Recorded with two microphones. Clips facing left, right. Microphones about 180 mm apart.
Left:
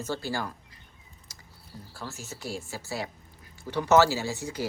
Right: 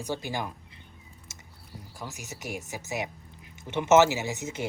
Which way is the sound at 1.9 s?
15° right (ahead or behind).